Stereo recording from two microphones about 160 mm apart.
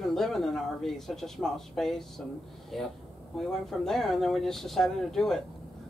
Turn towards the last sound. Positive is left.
turn(degrees=0)  # may be behind; listen again after turning